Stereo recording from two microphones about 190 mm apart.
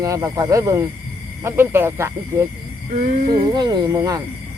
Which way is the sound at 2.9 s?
40° right (ahead or behind).